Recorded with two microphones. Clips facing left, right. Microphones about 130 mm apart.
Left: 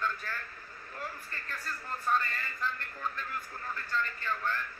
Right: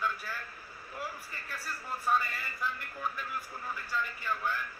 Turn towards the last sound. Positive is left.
turn(degrees=-10)  # may be behind; listen again after turning